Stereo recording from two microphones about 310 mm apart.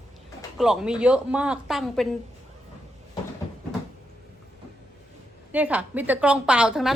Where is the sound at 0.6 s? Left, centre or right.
Centre.